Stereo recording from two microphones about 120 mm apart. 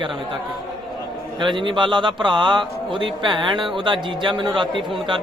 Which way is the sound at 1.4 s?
45° right (ahead or behind).